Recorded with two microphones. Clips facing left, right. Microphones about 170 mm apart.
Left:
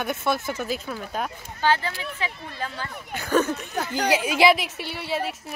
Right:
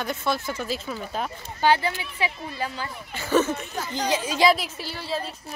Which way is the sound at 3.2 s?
5° right (ahead or behind).